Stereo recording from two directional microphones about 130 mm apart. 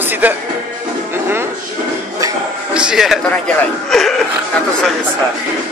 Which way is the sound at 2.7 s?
5° right (ahead or behind).